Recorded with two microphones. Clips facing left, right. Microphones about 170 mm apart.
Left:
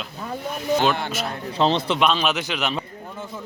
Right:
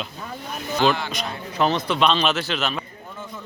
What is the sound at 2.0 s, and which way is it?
Speech, 10° left (ahead or behind).